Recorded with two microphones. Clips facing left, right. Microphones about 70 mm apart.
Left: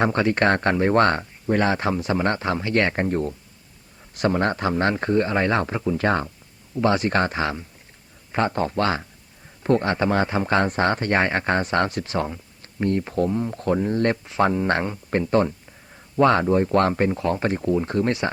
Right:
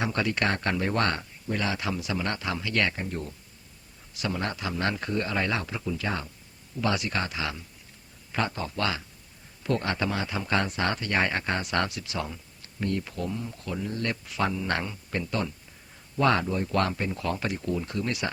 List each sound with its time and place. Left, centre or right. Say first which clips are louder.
0.0 s speech: left 8 dB; left
2.9 s speech: left 11 dB; left